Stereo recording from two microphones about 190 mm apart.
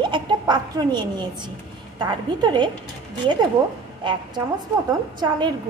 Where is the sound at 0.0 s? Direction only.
25° right (ahead or behind).